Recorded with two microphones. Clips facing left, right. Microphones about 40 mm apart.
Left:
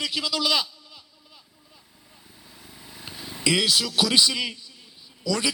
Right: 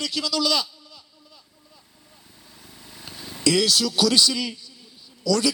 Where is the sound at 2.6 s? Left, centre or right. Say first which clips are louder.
Left 1 dB; centre.